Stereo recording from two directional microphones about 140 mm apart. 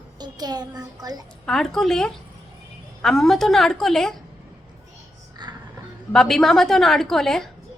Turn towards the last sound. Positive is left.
turn(degrees=5)  # may be behind; listen again after turning